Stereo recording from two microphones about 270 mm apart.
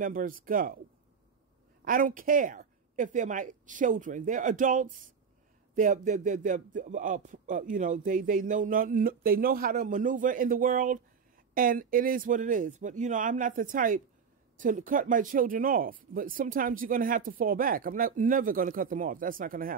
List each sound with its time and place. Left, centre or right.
0.0 s speech: right
1.9 s speech: right